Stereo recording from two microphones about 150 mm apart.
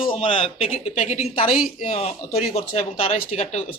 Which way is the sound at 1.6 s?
65° left (ahead or behind).